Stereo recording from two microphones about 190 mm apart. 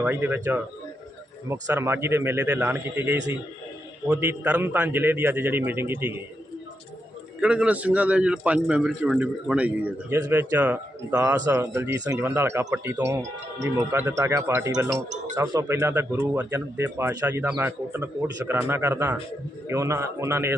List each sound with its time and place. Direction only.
0.0 s speech: 10° right (ahead or behind)
7.4 s speech: 5° right (ahead or behind)